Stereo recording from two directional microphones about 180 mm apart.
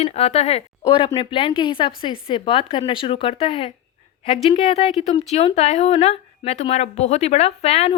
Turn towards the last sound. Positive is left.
turn(degrees=35)  # may be behind; listen again after turning